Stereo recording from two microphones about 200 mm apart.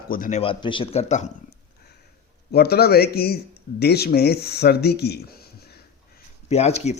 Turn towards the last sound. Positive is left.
turn(degrees=35)  # may be behind; listen again after turning